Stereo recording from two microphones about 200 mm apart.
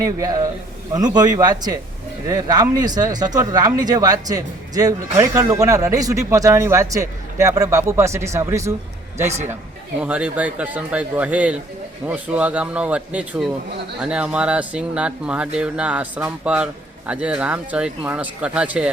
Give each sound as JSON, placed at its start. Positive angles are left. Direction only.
{"t": 0.0, "sound": "speech", "side_deg": -15}
{"t": 10.0, "sound": "speech", "side_deg": -5}